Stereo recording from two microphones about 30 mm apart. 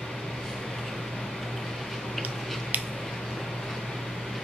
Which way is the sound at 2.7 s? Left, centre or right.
Right.